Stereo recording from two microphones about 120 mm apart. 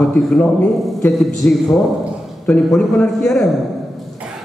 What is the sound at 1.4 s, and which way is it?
A man's voice, 15° left (ahead or behind).